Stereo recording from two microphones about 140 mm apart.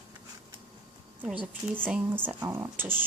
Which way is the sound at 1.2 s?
10° right (ahead or behind).